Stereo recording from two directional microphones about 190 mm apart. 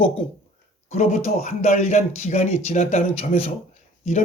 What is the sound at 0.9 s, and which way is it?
Speech, 35° left (ahead or behind).